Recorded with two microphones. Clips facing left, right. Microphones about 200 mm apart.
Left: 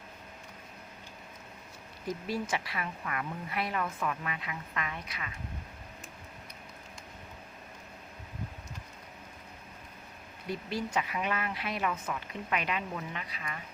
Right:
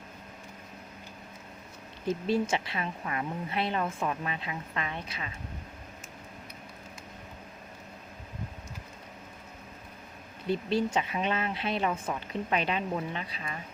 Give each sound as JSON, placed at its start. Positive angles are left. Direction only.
{"t": 2.0, "sound": "speech", "side_deg": -25}
{"t": 10.5, "sound": "speech", "side_deg": -25}